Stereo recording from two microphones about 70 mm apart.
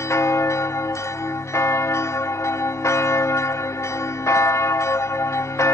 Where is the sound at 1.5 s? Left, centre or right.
Left.